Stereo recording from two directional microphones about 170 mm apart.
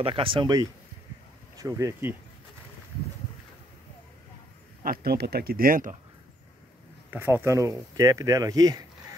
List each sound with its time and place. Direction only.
0.0 s speech: 30° right (ahead or behind); by 2.1 s 15° right (ahead or behind)
4.8 s speech: 60° right (ahead or behind)
7.1 s speech: 10° right (ahead or behind)